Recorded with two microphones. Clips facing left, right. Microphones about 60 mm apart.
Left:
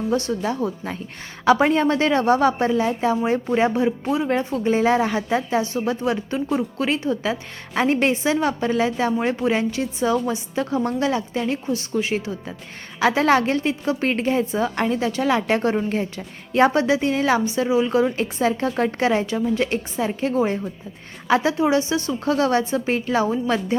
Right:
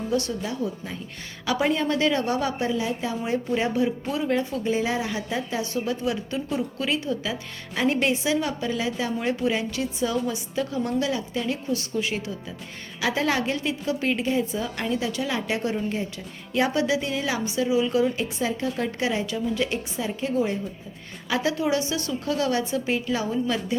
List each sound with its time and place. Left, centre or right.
0.1 s a woman's voice: left
0.4 s a woman's voice: left
4.3 s a woman's voice: left
13.0 s a woman's voice: left
15.3 s a woman's voice: left
16.5 s a woman's voice: left